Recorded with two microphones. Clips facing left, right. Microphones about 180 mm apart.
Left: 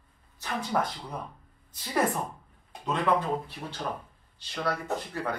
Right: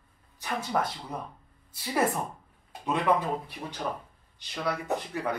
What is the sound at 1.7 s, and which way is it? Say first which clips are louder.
Speech: even; 5° right (ahead or behind).